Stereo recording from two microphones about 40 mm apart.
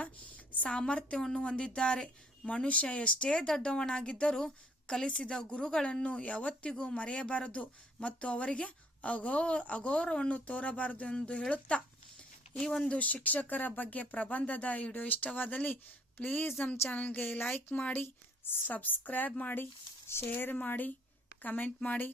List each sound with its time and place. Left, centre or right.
0.0 s a sound: left
0.7 s speech: left
1.4 s speech: left
2.5 s speech: left; by 5.0 s centre
5.0 s speech: left
9.0 s speech: left
12.5 s speech: centre
13.2 s speech: left
18.0 s speech: left
18.7 s speech: left
20.1 s speech: left